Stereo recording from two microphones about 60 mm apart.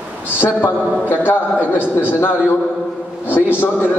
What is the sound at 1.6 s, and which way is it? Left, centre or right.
Speech, right.